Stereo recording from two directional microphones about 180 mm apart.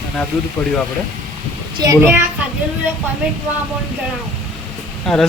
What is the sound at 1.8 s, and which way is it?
Speech, 20° right (ahead or behind).